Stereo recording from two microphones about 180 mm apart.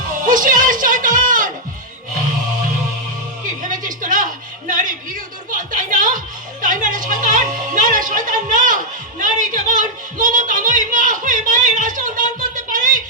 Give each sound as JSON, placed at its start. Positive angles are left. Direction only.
{"t": 0.3, "sound": "speech", "side_deg": -50}
{"t": 3.4, "sound": "a sound", "side_deg": -45}
{"t": 4.7, "sound": "speech", "side_deg": -50}